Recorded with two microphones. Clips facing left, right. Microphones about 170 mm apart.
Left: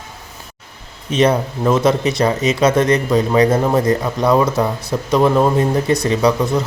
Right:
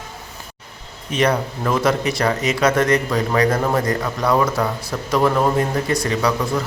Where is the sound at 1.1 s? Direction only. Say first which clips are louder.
Left 4 dB; 20° left (ahead or behind).